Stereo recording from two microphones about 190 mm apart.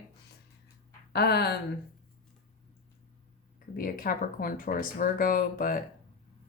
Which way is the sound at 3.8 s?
50° left (ahead or behind).